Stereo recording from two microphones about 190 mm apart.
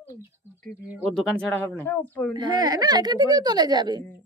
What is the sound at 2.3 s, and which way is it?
Speech, 25° right (ahead or behind).